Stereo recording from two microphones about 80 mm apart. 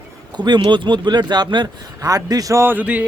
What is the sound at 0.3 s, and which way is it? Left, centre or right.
Speech, right.